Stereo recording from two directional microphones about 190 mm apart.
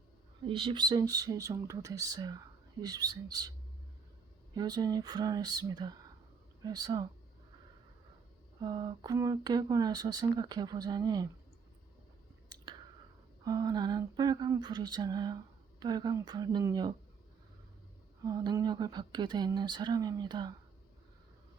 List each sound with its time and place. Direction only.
0.4 s speech: 25° right (ahead or behind)
4.5 s speech: 20° right (ahead or behind)
8.6 s speech: 25° right (ahead or behind)
13.4 s speech: 20° right (ahead or behind)
18.3 s speech: 20° right (ahead or behind)